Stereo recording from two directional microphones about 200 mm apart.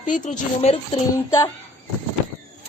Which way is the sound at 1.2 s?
15° left (ahead or behind).